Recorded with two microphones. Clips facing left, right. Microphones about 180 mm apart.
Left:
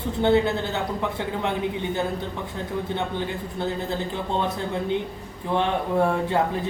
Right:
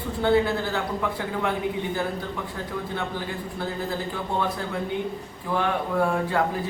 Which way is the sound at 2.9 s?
20° left (ahead or behind).